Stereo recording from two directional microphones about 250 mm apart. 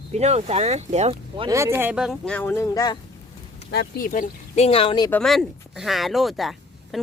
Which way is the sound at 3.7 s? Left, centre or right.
Left.